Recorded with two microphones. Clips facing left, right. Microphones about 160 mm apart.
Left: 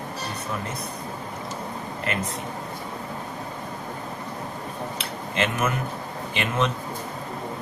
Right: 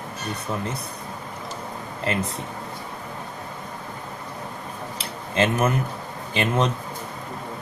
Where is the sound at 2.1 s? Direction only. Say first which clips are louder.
Right 3 dB; 30° right (ahead or behind).